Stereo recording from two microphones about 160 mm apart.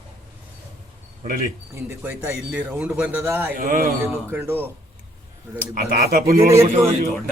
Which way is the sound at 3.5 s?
65° right (ahead or behind).